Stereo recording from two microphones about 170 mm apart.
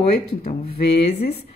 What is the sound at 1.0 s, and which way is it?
Speech, 35° left (ahead or behind).